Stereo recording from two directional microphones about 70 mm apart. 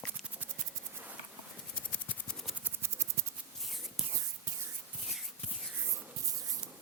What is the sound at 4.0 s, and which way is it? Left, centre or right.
Whispering, centre.